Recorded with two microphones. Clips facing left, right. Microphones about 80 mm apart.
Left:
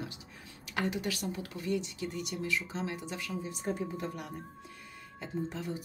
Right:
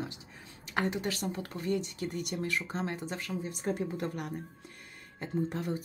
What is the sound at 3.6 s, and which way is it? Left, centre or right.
Speech, right.